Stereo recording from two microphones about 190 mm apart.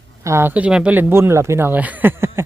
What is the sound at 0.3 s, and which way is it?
Speech, 10° right (ahead or behind).